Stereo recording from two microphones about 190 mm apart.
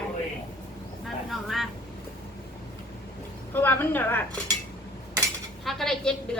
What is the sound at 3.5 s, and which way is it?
Speech, 10° left (ahead or behind).